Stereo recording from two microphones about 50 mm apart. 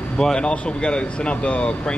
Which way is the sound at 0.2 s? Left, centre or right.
Centre.